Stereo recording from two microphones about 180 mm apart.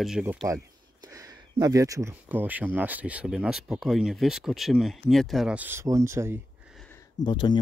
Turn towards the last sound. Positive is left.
turn(degrees=25)  # may be behind; listen again after turning